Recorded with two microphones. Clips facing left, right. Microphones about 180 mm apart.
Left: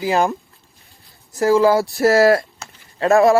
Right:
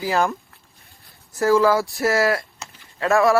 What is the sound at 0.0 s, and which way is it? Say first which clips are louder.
Speech: left 3 dB; 20° left (ahead or behind).